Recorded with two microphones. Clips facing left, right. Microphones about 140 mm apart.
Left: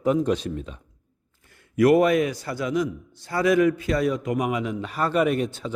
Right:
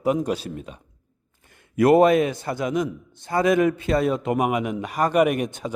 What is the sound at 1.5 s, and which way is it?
A man's voice, 20° right (ahead or behind).